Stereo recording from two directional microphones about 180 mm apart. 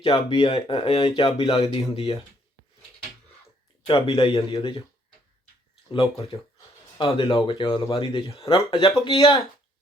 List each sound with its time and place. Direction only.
0.0 s speech: 25° left (ahead or behind)
3.8 s speech: 30° left (ahead or behind)
5.9 s speech: 30° left (ahead or behind)